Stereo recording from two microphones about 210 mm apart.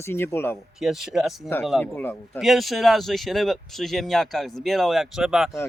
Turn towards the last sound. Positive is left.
turn(degrees=0)  # may be behind; listen again after turning